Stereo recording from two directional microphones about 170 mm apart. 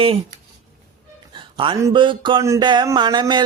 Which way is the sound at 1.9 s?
30° right (ahead or behind).